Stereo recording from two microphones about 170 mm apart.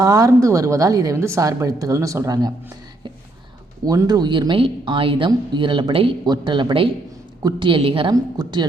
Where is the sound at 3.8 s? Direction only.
20° right (ahead or behind).